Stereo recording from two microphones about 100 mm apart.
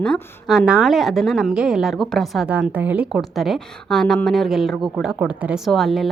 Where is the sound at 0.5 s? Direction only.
5° right (ahead or behind).